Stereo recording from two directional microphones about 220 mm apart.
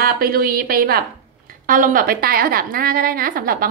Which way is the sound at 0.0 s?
45° right (ahead or behind).